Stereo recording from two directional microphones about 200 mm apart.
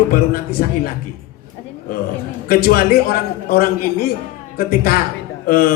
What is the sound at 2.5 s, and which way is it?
A man's voice, 45° left (ahead or behind).